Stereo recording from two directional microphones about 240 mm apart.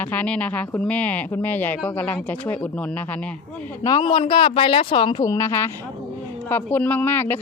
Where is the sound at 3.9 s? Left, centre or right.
Left.